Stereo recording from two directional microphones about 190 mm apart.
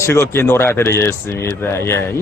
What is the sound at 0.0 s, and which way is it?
Speech, 15° left (ahead or behind).